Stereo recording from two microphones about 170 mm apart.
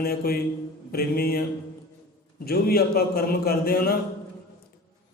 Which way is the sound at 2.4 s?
65° left (ahead or behind).